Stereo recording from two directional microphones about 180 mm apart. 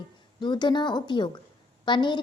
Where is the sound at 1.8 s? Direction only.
25° left (ahead or behind).